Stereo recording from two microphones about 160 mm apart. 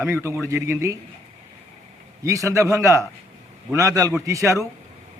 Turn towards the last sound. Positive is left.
turn(degrees=-20)  # may be behind; listen again after turning